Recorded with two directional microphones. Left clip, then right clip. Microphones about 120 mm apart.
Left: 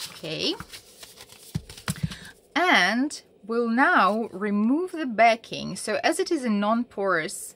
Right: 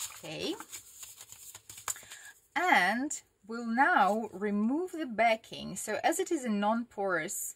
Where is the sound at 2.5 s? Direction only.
30° left (ahead or behind).